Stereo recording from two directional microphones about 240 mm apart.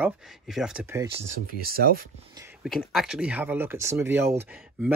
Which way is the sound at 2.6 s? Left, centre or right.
Centre.